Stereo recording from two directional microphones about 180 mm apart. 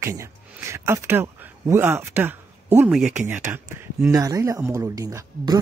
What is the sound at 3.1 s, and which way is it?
Speech, 10° right (ahead or behind).